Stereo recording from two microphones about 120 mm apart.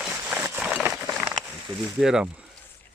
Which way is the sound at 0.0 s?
10° right (ahead or behind).